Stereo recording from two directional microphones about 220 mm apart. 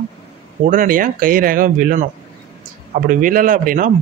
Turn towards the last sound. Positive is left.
turn(degrees=-40)  # may be behind; listen again after turning